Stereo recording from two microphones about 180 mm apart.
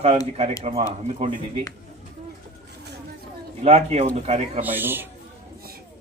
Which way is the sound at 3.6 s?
35° right (ahead or behind).